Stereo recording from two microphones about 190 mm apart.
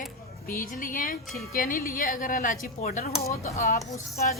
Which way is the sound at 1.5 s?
45° left (ahead or behind).